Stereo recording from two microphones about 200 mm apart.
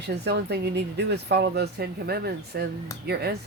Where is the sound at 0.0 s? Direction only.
55° right (ahead or behind).